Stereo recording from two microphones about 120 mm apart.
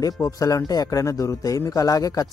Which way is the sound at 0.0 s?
30° left (ahead or behind).